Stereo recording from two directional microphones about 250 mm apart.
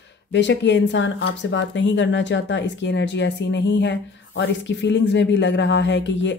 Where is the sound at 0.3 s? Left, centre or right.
Left.